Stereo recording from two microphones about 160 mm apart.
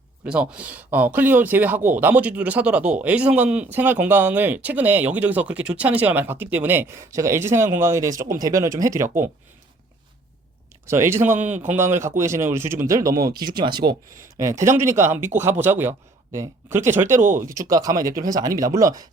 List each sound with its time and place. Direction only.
0.3 s speech: 5° right (ahead or behind)
10.8 s speech: 15° right (ahead or behind)